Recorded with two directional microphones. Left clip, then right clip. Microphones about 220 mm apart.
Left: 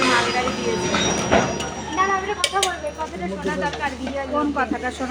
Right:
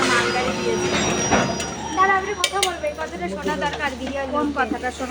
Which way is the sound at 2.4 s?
Centre (ahead or behind).